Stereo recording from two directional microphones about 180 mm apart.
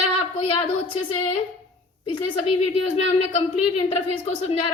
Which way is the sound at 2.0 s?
30° left (ahead or behind).